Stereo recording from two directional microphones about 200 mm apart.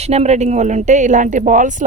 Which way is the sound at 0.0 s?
30° right (ahead or behind).